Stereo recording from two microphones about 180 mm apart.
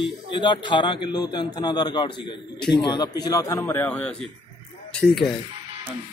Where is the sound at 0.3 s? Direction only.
25° left (ahead or behind); by 4.3 s 5° left (ahead or behind).